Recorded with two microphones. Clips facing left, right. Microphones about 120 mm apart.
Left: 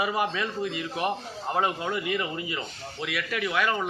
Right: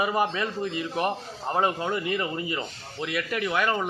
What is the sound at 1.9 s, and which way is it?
Speech, 35° right (ahead or behind).